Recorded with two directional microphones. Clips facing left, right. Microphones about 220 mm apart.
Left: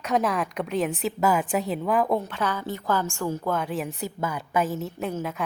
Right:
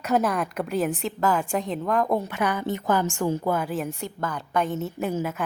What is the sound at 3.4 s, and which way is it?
A woman's voice, 5° right (ahead or behind).